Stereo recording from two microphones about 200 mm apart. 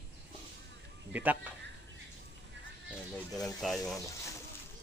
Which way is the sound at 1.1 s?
10° right (ahead or behind).